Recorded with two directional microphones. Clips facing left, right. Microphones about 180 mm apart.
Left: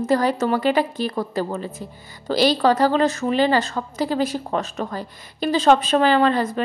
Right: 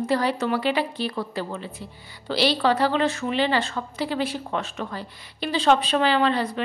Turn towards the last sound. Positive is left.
turn(degrees=45)  # may be behind; listen again after turning